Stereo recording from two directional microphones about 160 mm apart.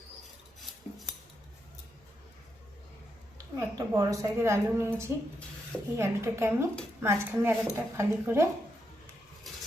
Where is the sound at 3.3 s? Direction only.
20° right (ahead or behind).